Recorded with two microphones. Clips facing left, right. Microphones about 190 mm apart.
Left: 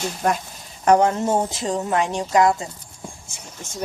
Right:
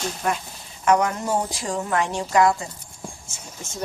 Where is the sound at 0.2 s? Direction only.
40° left (ahead or behind).